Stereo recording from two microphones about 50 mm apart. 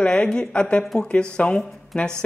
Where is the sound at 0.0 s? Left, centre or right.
Left.